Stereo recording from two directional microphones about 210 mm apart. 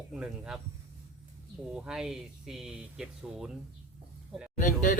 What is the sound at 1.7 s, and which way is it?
Speech, 5° right (ahead or behind).